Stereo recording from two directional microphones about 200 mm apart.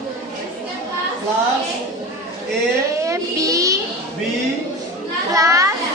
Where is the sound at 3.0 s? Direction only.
15° right (ahead or behind).